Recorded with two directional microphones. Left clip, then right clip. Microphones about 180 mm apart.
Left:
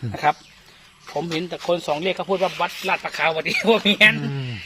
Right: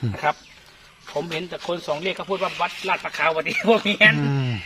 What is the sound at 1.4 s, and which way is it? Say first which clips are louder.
Speech: left 4 dB; 40° left (ahead or behind).